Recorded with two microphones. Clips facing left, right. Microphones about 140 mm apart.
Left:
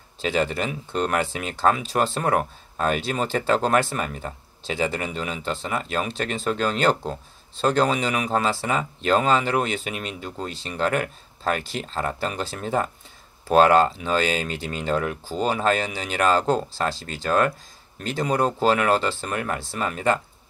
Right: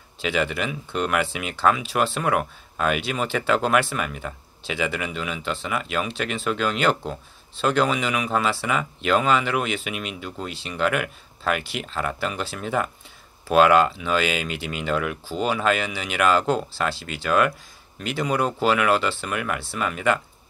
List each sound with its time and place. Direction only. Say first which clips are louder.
0.2 s speech: left 1 dB; 40° left (ahead or behind)